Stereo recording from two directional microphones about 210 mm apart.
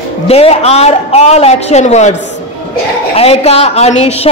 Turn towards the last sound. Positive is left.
turn(degrees=30)  # may be behind; listen again after turning